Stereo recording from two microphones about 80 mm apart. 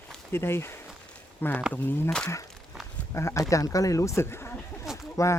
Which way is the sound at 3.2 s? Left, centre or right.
Left.